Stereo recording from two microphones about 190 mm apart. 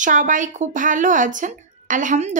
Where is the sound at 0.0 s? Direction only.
45° right (ahead or behind).